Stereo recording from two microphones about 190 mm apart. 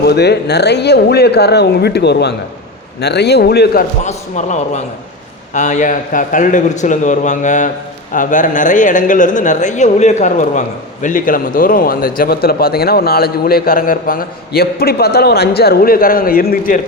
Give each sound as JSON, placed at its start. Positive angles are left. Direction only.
{"t": 0.0, "sound": "speech", "side_deg": 60}
{"t": 4.0, "sound": "a man's voice", "side_deg": 40}